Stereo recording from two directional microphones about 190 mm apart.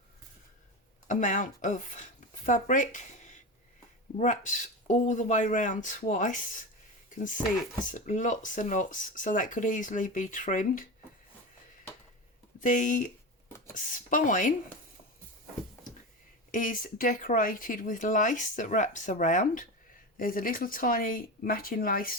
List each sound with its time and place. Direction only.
1.0 s speech: 40° left (ahead or behind)
7.9 s speech: 40° left (ahead or behind)
12.5 s speech: 45° left (ahead or behind)
16.5 s speech: 45° left (ahead or behind)